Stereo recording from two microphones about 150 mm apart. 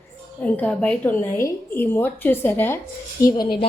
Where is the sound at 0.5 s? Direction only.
10° left (ahead or behind).